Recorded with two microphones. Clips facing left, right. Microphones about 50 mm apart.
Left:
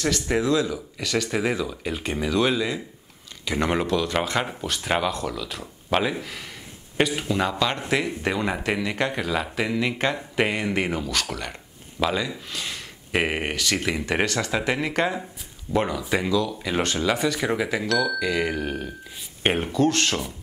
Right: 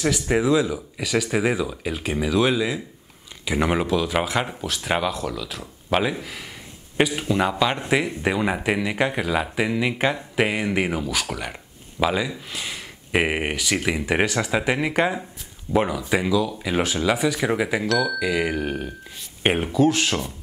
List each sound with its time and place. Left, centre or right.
0.0 s speech: centre